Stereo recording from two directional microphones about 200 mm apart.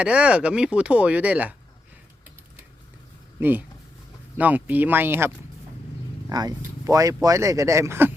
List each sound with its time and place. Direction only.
0.0 s speech: 5° right (ahead or behind)
4.4 s speech: 10° right (ahead or behind)